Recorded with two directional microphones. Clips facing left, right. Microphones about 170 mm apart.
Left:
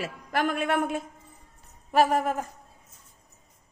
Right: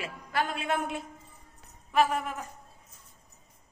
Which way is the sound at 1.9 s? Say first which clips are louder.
Left 4 dB; 40° left (ahead or behind).